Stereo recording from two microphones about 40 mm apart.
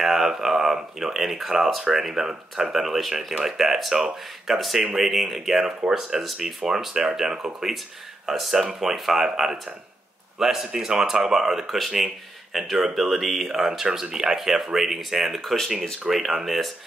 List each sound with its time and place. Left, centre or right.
0.0 s speech: centre